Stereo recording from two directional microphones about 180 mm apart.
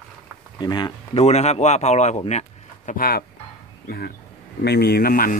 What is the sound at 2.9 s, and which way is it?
Speech, 55° left (ahead or behind).